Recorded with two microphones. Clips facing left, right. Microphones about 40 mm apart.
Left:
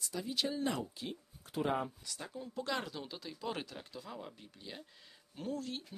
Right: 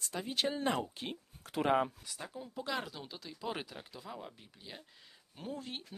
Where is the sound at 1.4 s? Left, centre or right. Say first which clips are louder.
Right 4 dB; right.